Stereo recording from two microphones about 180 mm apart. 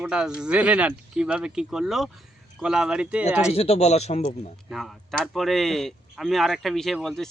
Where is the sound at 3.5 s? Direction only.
35° left (ahead or behind).